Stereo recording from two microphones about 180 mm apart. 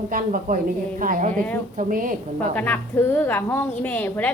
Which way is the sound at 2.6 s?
10° left (ahead or behind).